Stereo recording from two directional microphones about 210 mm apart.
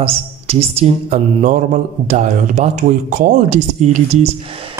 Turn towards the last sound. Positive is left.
turn(degrees=-35)  # may be behind; listen again after turning